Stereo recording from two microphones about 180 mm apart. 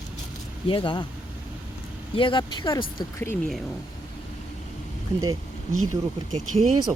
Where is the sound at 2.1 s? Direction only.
25° left (ahead or behind).